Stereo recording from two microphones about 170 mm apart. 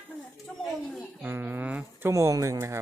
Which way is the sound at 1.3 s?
15° right (ahead or behind).